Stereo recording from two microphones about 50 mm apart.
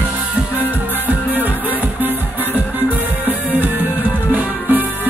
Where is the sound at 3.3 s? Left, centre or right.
Right.